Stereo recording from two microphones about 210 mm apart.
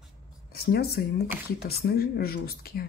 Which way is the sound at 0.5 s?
50° left (ahead or behind).